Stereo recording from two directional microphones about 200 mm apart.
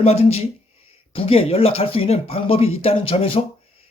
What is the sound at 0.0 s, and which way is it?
Speech, 30° left (ahead or behind).